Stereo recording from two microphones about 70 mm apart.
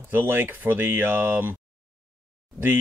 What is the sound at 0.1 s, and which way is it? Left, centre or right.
Speech, right.